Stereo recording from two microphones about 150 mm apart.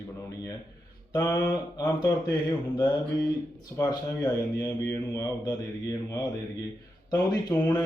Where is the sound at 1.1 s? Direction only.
25° left (ahead or behind).